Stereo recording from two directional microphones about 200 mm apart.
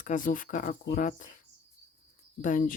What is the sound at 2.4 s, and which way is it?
Speech, 45° left (ahead or behind).